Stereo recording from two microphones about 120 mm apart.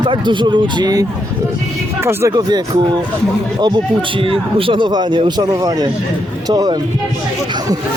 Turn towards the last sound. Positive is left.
turn(degrees=-35)  # may be behind; listen again after turning